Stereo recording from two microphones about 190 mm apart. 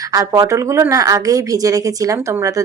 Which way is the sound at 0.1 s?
20° right (ahead or behind).